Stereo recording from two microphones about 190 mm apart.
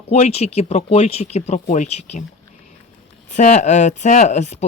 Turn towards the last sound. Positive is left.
turn(degrees=35)  # may be behind; listen again after turning